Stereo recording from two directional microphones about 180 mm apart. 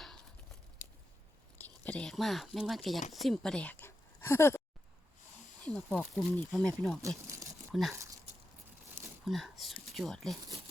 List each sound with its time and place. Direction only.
0.8 s a sound: 45° left (ahead or behind)
1.5 s speech: 5° left (ahead or behind)
5.6 s speech: 5° left (ahead or behind)
9.2 s speech: centre (ahead or behind)